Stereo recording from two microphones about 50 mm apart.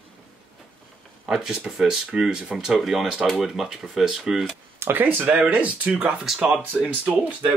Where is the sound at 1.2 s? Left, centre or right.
Centre.